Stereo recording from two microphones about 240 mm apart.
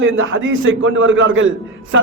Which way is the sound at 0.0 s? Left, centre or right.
Right.